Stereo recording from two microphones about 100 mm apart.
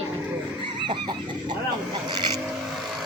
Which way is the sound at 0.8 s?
50° right (ahead or behind).